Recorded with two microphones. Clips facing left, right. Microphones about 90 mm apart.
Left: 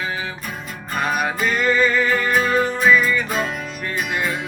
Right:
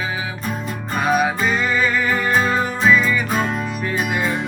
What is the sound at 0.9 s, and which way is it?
Music, 5° right (ahead or behind).